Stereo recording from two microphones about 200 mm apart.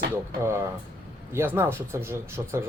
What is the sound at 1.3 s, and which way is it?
Speech, 10° right (ahead or behind).